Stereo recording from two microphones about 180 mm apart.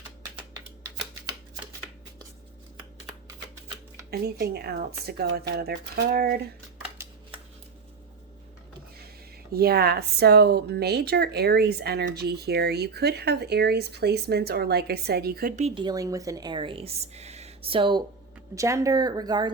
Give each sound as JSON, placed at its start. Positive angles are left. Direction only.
{"t": 0.8, "sound": "typewriter", "side_deg": -15}
{"t": 4.1, "sound": "speech", "side_deg": -60}
{"t": 9.5, "sound": "speech", "side_deg": -60}
{"t": 15.6, "sound": "speech", "side_deg": -25}
{"t": 18.5, "sound": "speech", "side_deg": -15}